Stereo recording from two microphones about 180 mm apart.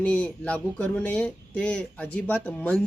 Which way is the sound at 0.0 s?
5° left (ahead or behind).